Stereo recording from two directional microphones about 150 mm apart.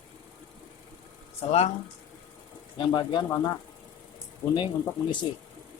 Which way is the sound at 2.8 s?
30° left (ahead or behind).